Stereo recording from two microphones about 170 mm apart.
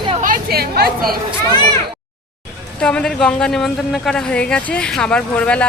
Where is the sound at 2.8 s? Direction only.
5° left (ahead or behind).